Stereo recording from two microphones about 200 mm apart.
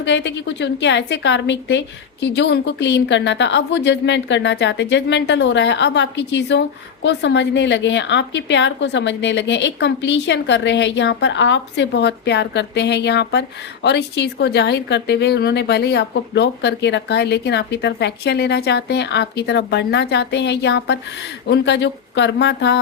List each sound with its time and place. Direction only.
0.0 s a woman's voice: 65° left (ahead or behind)